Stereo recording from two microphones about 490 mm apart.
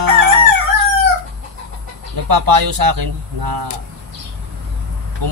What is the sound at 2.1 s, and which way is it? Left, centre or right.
Speech, right.